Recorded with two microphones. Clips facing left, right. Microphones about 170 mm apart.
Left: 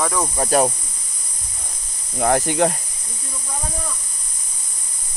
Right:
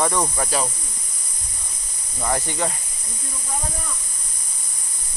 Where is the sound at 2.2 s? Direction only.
60° left (ahead or behind).